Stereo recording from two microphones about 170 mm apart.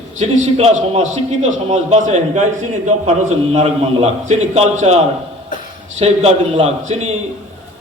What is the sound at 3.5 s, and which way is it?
A man's voice, 40° right (ahead or behind).